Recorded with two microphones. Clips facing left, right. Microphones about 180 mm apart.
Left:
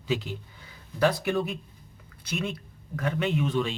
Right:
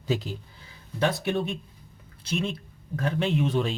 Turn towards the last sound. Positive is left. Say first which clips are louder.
# right 1 dB
turn(degrees=-35)  # may be behind; listen again after turning